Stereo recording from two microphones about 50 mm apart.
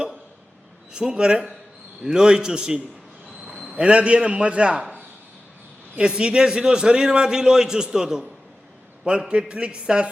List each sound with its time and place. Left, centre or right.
0.9 s a man's voice: centre
6.0 s a man's voice: centre